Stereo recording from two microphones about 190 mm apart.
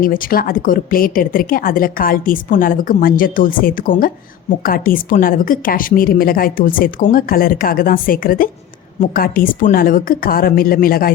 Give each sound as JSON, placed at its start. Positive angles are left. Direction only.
{"t": 0.0, "sound": "a woman's voice", "side_deg": 50}